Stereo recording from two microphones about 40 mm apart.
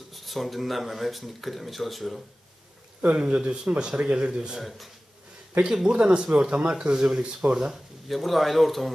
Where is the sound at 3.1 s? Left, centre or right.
Right.